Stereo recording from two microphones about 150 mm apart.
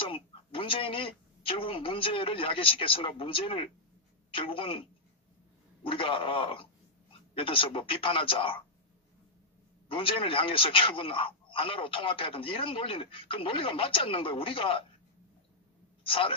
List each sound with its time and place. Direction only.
0.0 s a woman's voice: 35° left (ahead or behind)
5.9 s a man's voice: 35° left (ahead or behind)
9.8 s a man's voice: 35° left (ahead or behind)
16.1 s a man's voice: 35° left (ahead or behind)